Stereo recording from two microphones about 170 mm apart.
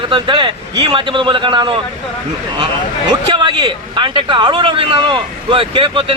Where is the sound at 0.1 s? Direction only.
30° right (ahead or behind).